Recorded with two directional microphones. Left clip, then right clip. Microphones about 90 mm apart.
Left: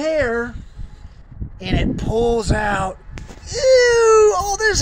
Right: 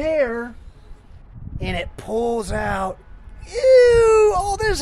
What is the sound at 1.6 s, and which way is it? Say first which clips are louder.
Speech: left 2 dB; 55° right (ahead or behind).